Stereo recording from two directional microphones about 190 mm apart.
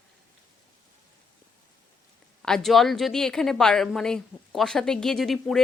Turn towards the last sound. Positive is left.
turn(degrees=0)  # may be behind; listen again after turning